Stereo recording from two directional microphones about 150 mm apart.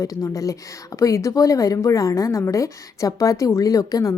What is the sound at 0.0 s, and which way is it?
A woman's voice, 20° left (ahead or behind).